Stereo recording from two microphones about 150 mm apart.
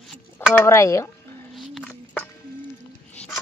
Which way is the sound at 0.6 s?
20° left (ahead or behind).